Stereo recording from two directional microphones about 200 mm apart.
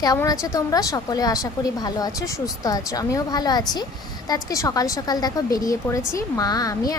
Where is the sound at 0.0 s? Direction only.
20° left (ahead or behind).